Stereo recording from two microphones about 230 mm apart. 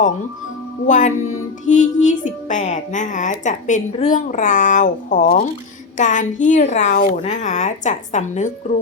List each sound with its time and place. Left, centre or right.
0.9 s music: left